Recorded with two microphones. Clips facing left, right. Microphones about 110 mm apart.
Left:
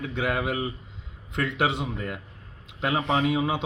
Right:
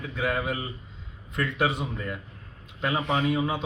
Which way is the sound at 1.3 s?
90° left.